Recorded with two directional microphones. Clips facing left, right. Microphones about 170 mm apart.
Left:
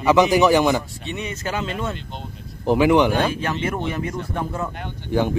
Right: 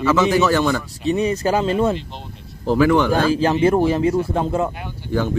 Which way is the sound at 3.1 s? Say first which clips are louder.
Right 5 dB; 30° right (ahead or behind).